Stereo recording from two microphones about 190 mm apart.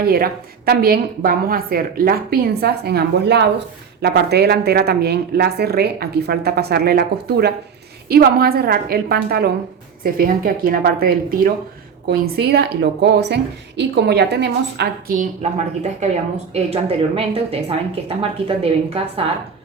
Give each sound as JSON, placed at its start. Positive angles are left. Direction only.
{"t": 0.0, "sound": "a woman's voice", "side_deg": -50}
{"t": 15.2, "sound": "a woman's voice", "side_deg": -35}